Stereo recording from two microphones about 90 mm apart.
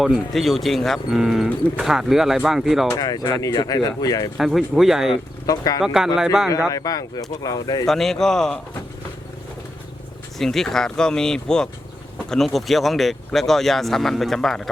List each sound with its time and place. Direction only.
0.0 s speech: centre (ahead or behind)
3.0 s speech: 45° left (ahead or behind)
4.4 s speech: 5° right (ahead or behind)
5.5 s speech: 40° left (ahead or behind)
5.8 s speech: 5° right (ahead or behind)
6.7 s speech: 40° left (ahead or behind)
7.9 s speech: 5° left (ahead or behind)
10.3 s speech: 5° left (ahead or behind)